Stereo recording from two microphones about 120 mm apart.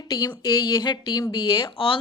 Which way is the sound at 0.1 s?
35° left (ahead or behind).